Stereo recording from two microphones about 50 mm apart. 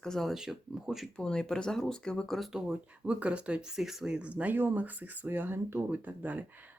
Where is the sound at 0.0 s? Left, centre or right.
Centre.